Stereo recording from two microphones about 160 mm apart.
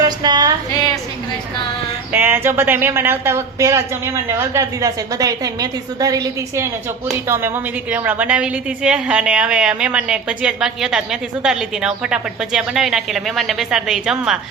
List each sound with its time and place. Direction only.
0.0 s music: 25° right (ahead or behind)
2.1 s a woman's voice: 15° right (ahead or behind)